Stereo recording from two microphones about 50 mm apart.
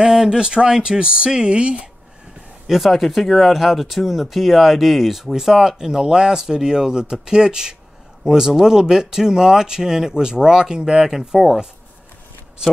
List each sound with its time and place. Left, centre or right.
0.0 s speech: centre
2.6 s speech: centre